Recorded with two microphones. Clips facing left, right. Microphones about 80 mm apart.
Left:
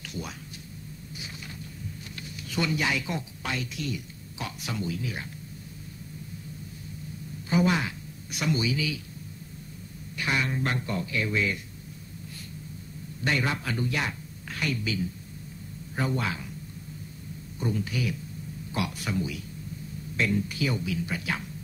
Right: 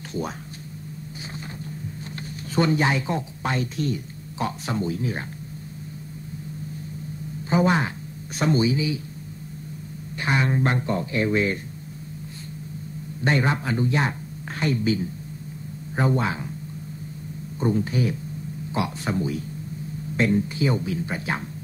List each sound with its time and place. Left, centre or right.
2.5 s speech: right
7.4 s speech: right
10.1 s speech: right
13.2 s a man's voice: right
17.6 s speech: right